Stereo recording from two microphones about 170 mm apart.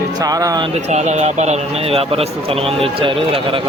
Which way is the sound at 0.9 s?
40° right (ahead or behind).